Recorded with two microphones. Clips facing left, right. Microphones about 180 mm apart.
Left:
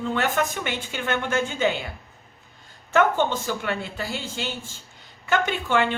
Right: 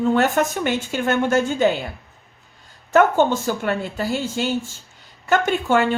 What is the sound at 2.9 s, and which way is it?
A woman's voice, 45° right (ahead or behind).